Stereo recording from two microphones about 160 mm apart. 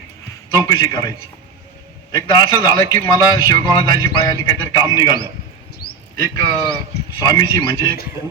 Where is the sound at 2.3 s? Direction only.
25° left (ahead or behind).